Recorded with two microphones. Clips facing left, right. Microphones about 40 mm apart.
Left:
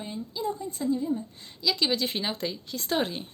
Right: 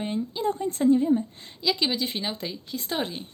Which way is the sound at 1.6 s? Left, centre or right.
Centre.